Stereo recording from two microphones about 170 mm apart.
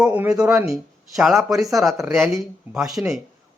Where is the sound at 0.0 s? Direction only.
5° right (ahead or behind).